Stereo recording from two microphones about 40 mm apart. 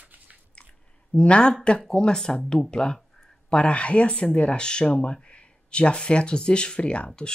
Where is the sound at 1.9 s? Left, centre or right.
Centre.